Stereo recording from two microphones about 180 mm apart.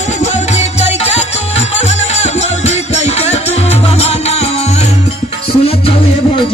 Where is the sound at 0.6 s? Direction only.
35° left (ahead or behind).